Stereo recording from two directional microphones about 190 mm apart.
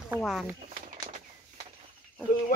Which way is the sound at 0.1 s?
5° right (ahead or behind).